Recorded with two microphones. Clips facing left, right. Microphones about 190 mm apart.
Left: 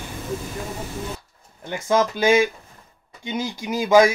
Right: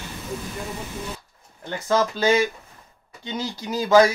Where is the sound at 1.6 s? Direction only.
10° left (ahead or behind).